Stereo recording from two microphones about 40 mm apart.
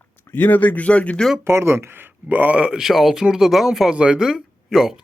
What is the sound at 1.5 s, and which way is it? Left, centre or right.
Speech, right.